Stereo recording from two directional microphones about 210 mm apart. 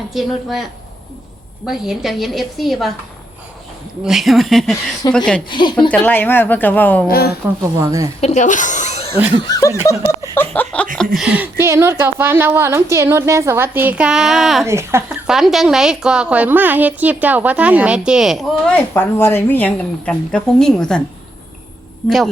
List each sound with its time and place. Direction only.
0.1 s a woman's voice: centre (ahead or behind)
4.0 s a woman's voice: centre (ahead or behind)
5.5 s speech: 20° left (ahead or behind)
5.9 s speech: 5° left (ahead or behind)
7.1 s speech: 45° left (ahead or behind)
7.6 s a woman's voice: 10° right (ahead or behind)
8.2 s a sound: 35° left (ahead or behind)
9.4 s a woman's voice: 15° left (ahead or behind); by 14.7 s centre (ahead or behind)
14.7 s a woman's voice: 10° right (ahead or behind)